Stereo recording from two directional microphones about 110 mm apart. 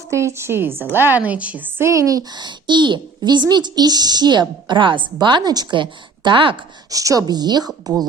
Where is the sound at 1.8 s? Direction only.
30° right (ahead or behind); by 6.5 s 50° right (ahead or behind).